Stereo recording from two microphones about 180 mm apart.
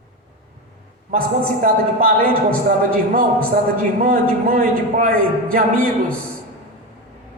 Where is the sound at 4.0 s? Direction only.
55° right (ahead or behind).